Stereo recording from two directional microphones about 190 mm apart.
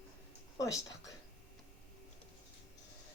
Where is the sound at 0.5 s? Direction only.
15° left (ahead or behind).